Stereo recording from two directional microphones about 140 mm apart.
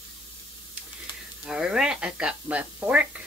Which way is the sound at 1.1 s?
35° left (ahead or behind).